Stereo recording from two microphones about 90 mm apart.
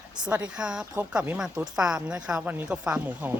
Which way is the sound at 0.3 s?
15° right (ahead or behind).